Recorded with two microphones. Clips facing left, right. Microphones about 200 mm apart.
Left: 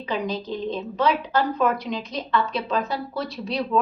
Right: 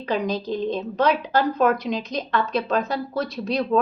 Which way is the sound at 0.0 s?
40° right (ahead or behind).